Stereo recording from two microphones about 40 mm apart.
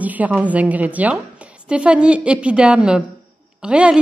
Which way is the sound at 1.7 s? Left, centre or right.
Right.